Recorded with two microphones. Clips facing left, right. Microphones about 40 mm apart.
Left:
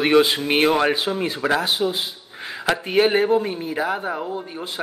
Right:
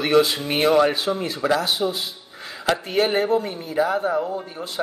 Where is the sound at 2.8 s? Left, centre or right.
Left.